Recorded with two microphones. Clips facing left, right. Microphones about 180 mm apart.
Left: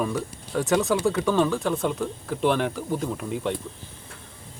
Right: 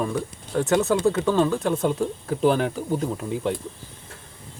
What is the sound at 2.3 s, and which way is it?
Speech, 40° right (ahead or behind).